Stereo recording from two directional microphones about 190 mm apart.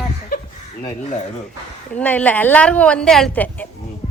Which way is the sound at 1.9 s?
5° left (ahead or behind).